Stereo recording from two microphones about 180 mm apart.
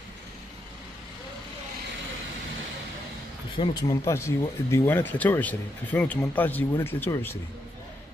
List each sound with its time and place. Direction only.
3.5 s speech: 30° left (ahead or behind)
4.0 s speech: 15° left (ahead or behind)